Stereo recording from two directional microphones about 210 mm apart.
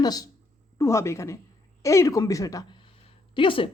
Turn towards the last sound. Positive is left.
turn(degrees=25)  # may be behind; listen again after turning